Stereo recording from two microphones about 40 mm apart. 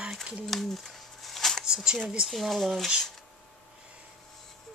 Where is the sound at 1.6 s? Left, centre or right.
Centre.